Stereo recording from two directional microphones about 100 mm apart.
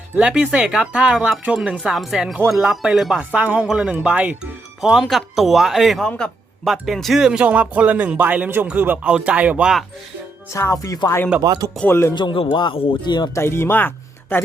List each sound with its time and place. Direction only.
0.2 s speech: 10° right (ahead or behind)
3.2 s speech: 15° right (ahead or behind)
6.1 s a man's voice: 10° left (ahead or behind)
6.7 s speech: centre (ahead or behind)
10.5 s speech: 30° left (ahead or behind)
11.4 s speech: 40° right (ahead or behind)
11.9 s speech: 25° left (ahead or behind)
12.1 s speech: 55° left (ahead or behind)
13.1 s speech: 45° left (ahead or behind)
13.3 s speech: 25° left (ahead or behind)